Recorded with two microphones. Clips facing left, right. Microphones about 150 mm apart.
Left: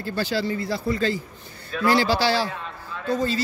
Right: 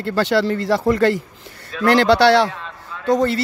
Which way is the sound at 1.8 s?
70° right (ahead or behind).